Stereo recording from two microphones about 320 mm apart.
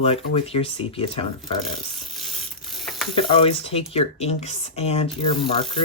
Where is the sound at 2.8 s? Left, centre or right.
Centre.